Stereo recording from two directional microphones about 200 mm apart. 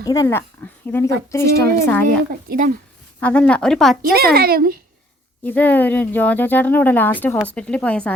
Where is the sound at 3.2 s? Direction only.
5° left (ahead or behind).